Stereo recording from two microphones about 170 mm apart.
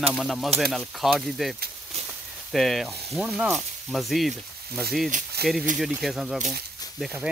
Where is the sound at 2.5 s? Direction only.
Centre (ahead or behind).